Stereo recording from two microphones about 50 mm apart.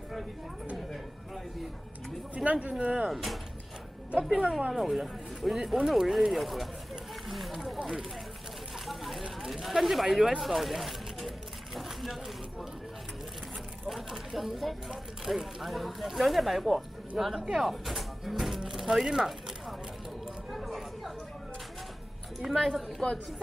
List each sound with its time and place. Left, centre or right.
2.3 s speech: right
3.1 s speech: centre
4.7 s speech: centre
7.3 s a sound: centre
7.8 s run: centre
8.9 s a sound: centre
13.9 s speech: centre
18.7 s a sound: centre
20.2 s chatter: centre
22.4 s speech: centre
23.0 s a woman's voice: centre